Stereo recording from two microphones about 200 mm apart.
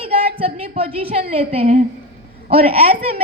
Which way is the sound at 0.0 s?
30° right (ahead or behind).